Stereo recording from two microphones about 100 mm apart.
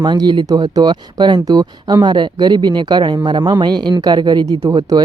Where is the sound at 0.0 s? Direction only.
50° right (ahead or behind).